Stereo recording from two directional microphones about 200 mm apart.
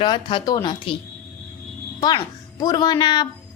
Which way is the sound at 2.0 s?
20° left (ahead or behind).